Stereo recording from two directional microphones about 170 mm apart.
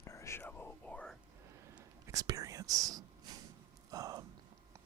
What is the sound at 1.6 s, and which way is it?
Whispering, 15° right (ahead or behind).